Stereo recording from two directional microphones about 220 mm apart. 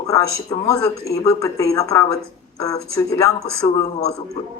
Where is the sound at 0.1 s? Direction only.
15° left (ahead or behind).